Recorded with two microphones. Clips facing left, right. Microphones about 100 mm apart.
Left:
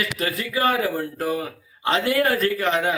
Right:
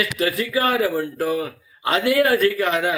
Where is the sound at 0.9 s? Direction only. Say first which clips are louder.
Right 3 dB; 30° left (ahead or behind).